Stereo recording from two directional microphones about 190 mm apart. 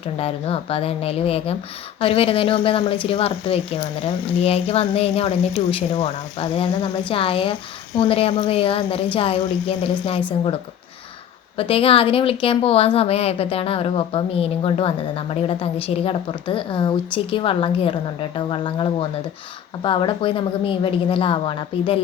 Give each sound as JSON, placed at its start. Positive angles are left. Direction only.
{"t": 0.0, "sound": "a woman's voice", "side_deg": 30}
{"t": 11.5, "sound": "speech", "side_deg": 30}